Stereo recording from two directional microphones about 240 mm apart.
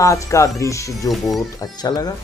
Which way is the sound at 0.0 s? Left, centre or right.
Centre.